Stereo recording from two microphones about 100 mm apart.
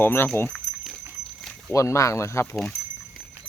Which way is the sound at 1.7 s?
30° left (ahead or behind).